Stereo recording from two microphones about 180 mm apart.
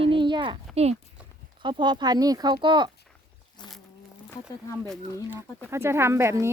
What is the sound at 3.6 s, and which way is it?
Insect, 25° left (ahead or behind).